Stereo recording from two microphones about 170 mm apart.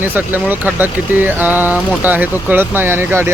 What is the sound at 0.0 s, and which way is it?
Speech, 10° right (ahead or behind).